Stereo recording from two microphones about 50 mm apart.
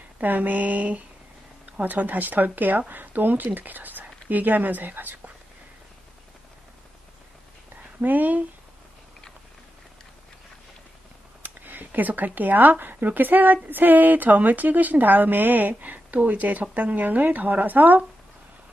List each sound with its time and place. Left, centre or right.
0.2 s a woman's voice: right
7.7 s a sound: right
11.4 s a woman's voice: right